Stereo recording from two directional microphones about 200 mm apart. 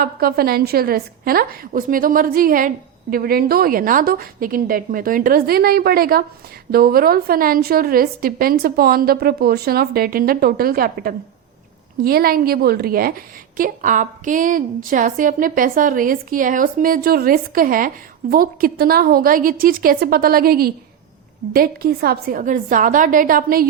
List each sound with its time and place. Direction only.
0.0 s a woman's voice: 50° right (ahead or behind)